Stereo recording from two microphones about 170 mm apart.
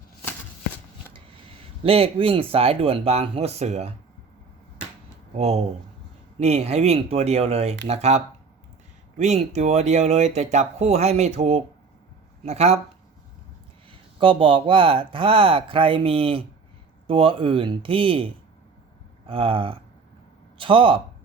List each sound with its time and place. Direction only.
1.8 s speech: 35° right (ahead or behind)
5.4 s speech: 35° right (ahead or behind)
14.2 s speech: 30° right (ahead or behind)